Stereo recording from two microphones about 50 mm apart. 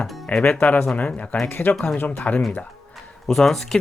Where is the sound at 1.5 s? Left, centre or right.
Left.